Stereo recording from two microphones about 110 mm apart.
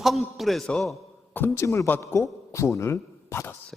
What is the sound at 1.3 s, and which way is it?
A man's voice, 20° left (ahead or behind).